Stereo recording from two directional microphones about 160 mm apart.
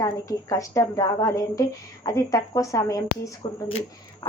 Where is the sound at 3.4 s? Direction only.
35° left (ahead or behind).